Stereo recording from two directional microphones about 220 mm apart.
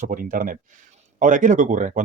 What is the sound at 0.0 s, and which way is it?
Speech, 40° right (ahead or behind).